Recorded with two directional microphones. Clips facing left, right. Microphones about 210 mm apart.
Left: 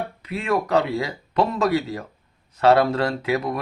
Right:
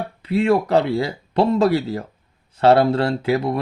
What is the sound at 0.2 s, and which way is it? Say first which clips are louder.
Speech: right 7 dB; 30° right (ahead or behind).